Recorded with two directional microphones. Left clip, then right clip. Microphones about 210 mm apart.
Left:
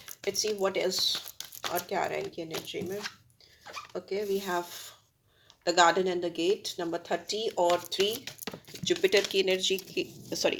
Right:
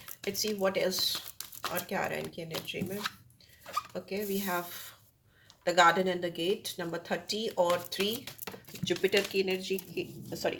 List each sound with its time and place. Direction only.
0.0 s speech: 25° left (ahead or behind)
3.9 s speech: 25° left (ahead or behind); by 10.6 s 55° left (ahead or behind)